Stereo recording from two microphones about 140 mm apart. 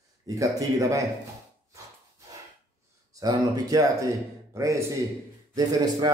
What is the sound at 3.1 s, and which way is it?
A man's voice, 25° right (ahead or behind).